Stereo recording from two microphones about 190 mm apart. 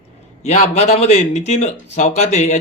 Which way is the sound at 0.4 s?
35° left (ahead or behind).